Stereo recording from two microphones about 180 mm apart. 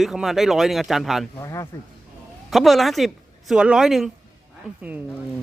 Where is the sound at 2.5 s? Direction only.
Centre (ahead or behind).